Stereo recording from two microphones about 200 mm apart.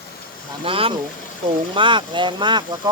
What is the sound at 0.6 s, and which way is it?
Speech, 25° right (ahead or behind).